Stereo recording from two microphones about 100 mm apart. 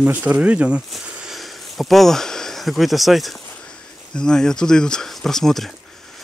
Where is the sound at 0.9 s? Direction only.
Centre (ahead or behind).